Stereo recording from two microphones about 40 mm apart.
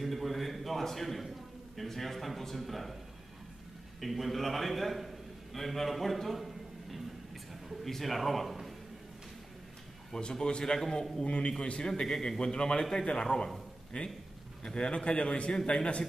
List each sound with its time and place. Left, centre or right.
0.0 s a sound: centre
1.8 s a man's voice: centre
4.0 s a man's voice: centre
7.8 s a man's voice: centre
10.1 s a man's voice: centre
11.2 s a man's voice: left
13.9 s a man's voice: left
14.6 s a man's voice: left